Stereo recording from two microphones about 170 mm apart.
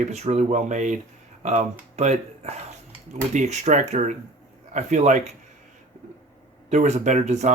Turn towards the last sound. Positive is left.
turn(degrees=-45)  # may be behind; listen again after turning